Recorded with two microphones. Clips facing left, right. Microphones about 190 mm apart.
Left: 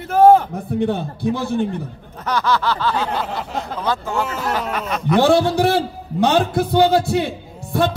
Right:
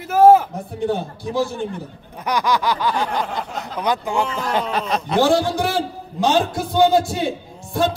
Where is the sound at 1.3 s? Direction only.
60° left (ahead or behind).